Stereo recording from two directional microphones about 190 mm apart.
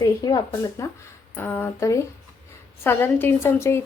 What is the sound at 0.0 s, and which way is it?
A woman's voice, 20° left (ahead or behind).